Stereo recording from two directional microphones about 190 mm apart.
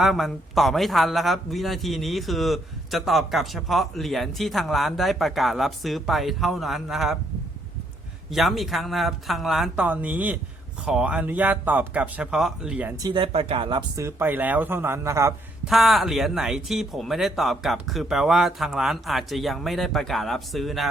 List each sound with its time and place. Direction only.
0.0 s a man's voice: centre (ahead or behind)
8.3 s a man's voice: centre (ahead or behind)
13.0 s speech: 25° right (ahead or behind)
15.6 s a man's voice: centre (ahead or behind)